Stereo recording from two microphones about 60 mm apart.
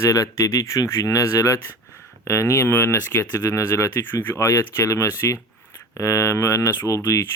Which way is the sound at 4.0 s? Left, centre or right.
Left.